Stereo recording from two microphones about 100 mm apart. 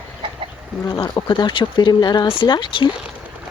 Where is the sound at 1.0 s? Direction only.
50° left (ahead or behind).